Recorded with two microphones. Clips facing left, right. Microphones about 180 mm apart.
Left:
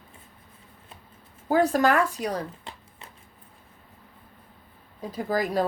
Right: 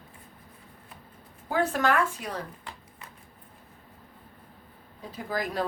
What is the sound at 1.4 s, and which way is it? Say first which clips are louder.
Speech: left 5 dB; 40° left (ahead or behind).